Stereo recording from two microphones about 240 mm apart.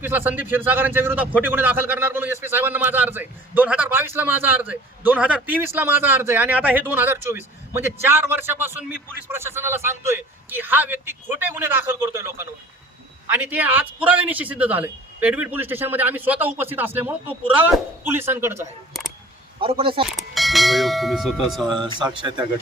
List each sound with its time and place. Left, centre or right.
0.0 s a man's voice: centre
13.3 s a man's voice: centre
19.5 s a man's voice: right
20.1 s a sound: centre
21.8 s a man's voice: centre